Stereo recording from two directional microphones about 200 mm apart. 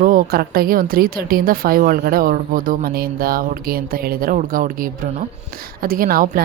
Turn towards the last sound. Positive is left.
turn(degrees=-45)  # may be behind; listen again after turning